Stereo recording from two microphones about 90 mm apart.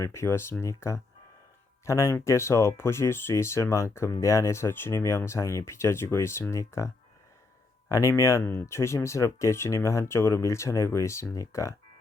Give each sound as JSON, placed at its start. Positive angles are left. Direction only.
{"t": 0.0, "sound": "speech", "side_deg": 30}